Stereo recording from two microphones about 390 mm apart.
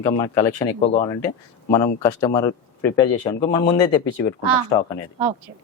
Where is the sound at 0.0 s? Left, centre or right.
Centre.